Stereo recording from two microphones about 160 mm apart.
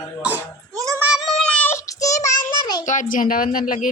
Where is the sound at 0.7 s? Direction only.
20° right (ahead or behind).